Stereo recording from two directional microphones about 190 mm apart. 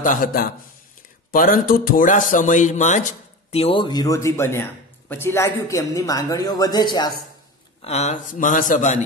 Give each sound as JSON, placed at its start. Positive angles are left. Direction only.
{"t": 0.0, "sound": "a man's voice", "side_deg": 45}
{"t": 3.5, "sound": "speech", "side_deg": 30}
{"t": 7.8, "sound": "a man's voice", "side_deg": 35}